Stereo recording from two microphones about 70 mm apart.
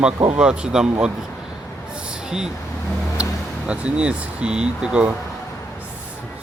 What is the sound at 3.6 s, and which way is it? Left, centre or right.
A man's voice, centre.